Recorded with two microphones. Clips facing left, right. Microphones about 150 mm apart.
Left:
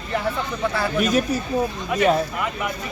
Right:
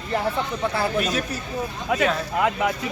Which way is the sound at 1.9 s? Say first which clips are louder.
Left 2 dB; 90° right.